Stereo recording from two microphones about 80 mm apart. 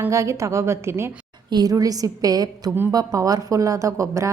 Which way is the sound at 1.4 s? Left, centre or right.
Right.